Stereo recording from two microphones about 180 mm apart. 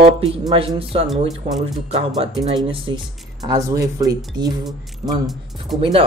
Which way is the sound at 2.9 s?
25° right (ahead or behind).